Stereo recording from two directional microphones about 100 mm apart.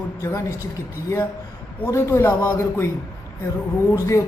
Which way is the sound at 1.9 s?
30° left (ahead or behind).